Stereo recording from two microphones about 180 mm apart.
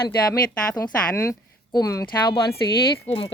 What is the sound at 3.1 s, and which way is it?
Speech, 35° left (ahead or behind).